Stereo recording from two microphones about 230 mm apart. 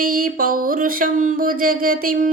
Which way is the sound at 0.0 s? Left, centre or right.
Right.